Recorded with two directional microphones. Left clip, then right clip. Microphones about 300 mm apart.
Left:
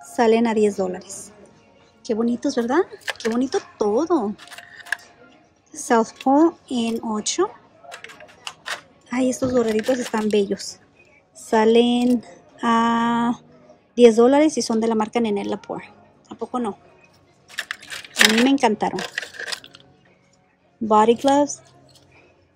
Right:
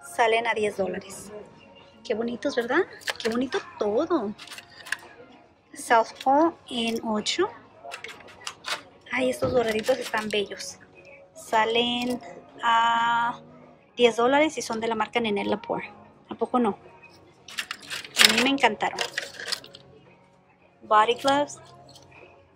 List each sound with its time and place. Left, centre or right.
0.2 s music: centre
0.7 s speech: centre
5.7 s speech: left
11.4 s music: centre
13.9 s speech: left
17.6 s a sound: centre
18.5 s speech: centre
18.9 s sewing machine: centre
20.9 s music: centre